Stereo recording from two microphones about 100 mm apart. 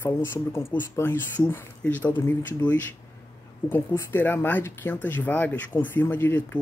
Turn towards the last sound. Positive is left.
turn(degrees=20)  # may be behind; listen again after turning